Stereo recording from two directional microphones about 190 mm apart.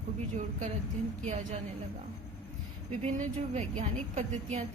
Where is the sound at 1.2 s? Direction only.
35° right (ahead or behind).